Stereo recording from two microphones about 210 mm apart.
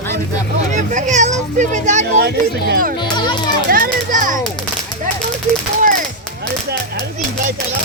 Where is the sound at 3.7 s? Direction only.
40° right (ahead or behind).